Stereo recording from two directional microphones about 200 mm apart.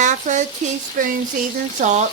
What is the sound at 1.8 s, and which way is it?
Speech, 35° right (ahead or behind).